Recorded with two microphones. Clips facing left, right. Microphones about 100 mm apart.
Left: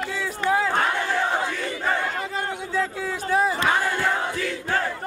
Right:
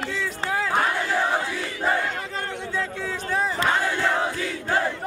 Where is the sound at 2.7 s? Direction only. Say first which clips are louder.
Left 3 dB; 5° left (ahead or behind).